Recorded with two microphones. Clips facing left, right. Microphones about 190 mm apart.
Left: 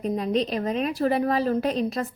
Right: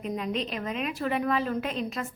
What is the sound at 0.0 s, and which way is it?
A woman's voice, 35° left (ahead or behind).